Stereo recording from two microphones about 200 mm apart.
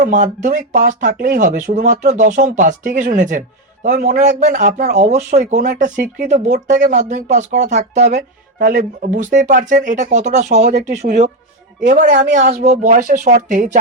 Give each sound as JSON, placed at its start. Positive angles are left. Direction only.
{"t": 0.1, "sound": "speech", "side_deg": -40}